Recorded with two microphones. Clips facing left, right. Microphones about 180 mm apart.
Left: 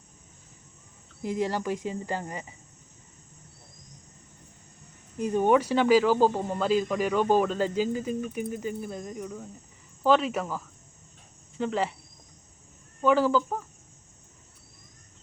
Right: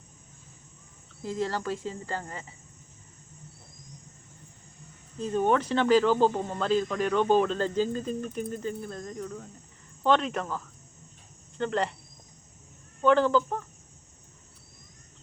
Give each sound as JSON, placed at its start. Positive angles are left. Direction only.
{"t": 1.2, "sound": "speech", "side_deg": 15}
{"t": 5.1, "sound": "speech", "side_deg": 15}
{"t": 13.0, "sound": "speech", "side_deg": 5}